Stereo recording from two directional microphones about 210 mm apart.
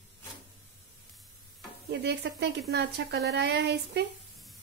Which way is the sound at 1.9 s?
55° right (ahead or behind).